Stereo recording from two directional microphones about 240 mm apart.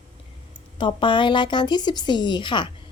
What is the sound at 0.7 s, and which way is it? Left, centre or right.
A woman's voice, centre.